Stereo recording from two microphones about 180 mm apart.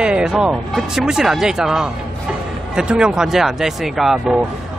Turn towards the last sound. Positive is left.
turn(degrees=0)  # may be behind; listen again after turning